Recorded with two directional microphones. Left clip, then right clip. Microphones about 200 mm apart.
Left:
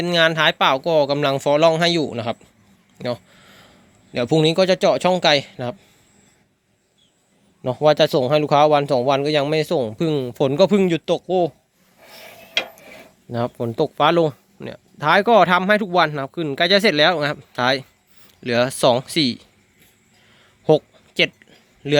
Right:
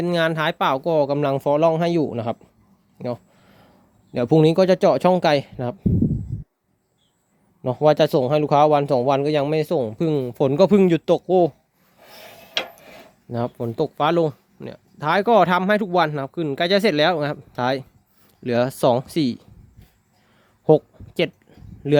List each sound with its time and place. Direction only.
0.0 s speech: 15° right (ahead or behind)
3.0 s a sound: 10° right (ahead or behind)
4.1 s speech: 20° right (ahead or behind)
7.6 s speech: 15° right (ahead or behind)
13.3 s speech: 5° right (ahead or behind)
20.7 s a sound: 20° right (ahead or behind)